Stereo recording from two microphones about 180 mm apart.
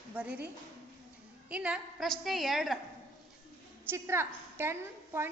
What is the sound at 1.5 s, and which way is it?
A woman's voice, 5° right (ahead or behind).